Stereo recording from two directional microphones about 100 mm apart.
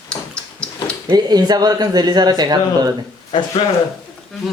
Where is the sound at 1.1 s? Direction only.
45° right (ahead or behind).